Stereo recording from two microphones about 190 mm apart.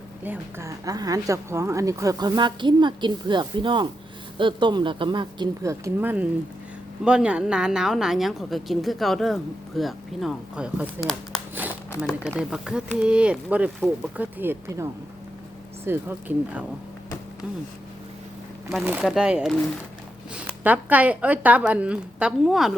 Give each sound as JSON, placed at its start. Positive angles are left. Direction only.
{"t": 0.3, "sound": "speech", "side_deg": -15}
{"t": 12.4, "sound": "speech", "side_deg": -5}
{"t": 18.7, "sound": "speech", "side_deg": -5}